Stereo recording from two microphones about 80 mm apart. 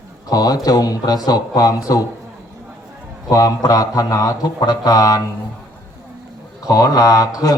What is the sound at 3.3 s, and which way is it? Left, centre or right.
Speech, left.